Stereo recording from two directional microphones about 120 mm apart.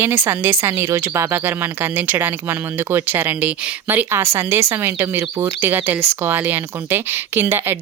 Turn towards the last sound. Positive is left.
turn(degrees=-20)  # may be behind; listen again after turning